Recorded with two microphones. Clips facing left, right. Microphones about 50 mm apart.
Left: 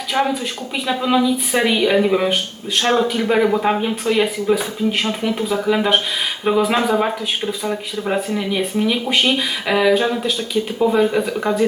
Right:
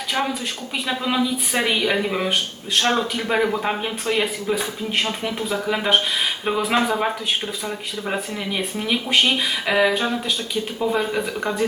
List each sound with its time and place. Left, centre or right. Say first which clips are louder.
0.1 s speech: left 6 dB; centre
0.9 s speech: left 5 dB; centre
2.8 s speech: left 5 dB; left
3.1 s speech: left 5 dB; centre